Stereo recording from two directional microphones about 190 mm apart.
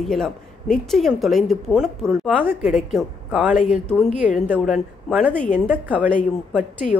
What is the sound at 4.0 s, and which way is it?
Speech, 35° left (ahead or behind).